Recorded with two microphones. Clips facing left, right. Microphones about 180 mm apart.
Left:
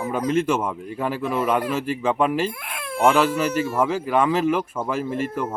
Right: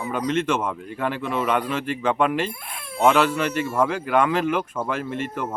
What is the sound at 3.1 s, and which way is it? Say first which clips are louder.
Speech: left 1 dB; 5° left (ahead or behind).